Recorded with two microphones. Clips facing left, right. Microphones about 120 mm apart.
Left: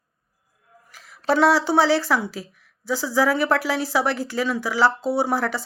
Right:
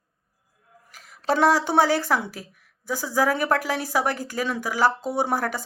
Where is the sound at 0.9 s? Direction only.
45° right (ahead or behind).